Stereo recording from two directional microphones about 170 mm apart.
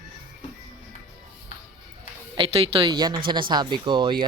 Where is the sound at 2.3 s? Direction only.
30° right (ahead or behind).